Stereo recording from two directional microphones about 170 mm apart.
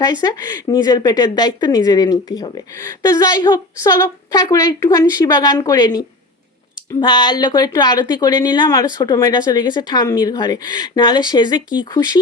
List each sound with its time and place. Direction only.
0.0 s speech: 20° left (ahead or behind)